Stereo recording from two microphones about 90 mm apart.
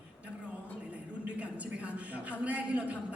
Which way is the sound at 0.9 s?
15° right (ahead or behind).